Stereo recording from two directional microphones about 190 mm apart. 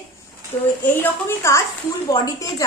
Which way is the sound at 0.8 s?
10° left (ahead or behind).